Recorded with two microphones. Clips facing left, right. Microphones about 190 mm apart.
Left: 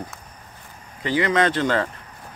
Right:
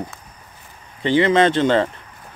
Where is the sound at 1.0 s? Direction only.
25° right (ahead or behind).